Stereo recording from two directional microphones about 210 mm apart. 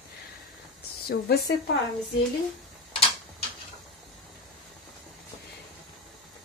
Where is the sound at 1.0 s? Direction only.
50° left (ahead or behind).